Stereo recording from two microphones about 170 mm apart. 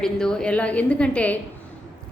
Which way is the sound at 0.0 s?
5° left (ahead or behind).